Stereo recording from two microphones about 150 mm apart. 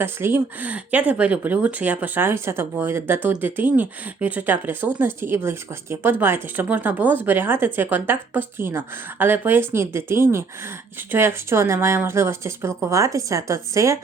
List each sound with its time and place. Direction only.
0.0 s speech: 15° right (ahead or behind)